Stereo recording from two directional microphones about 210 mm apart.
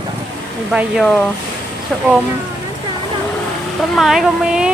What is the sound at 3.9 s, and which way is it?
Speech, centre (ahead or behind).